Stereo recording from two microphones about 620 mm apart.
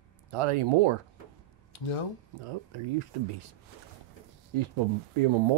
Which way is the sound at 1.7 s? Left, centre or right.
Left.